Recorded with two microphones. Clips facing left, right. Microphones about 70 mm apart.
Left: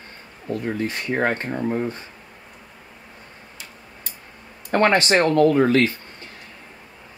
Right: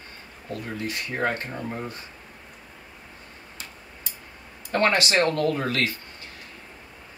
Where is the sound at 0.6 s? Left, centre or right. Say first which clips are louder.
Left 5 dB; left.